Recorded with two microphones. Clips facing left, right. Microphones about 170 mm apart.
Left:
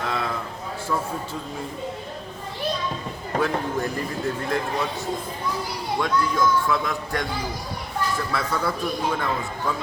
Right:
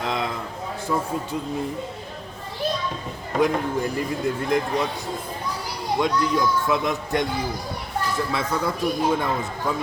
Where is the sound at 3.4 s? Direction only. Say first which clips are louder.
Right 3 dB; 10° right (ahead or behind).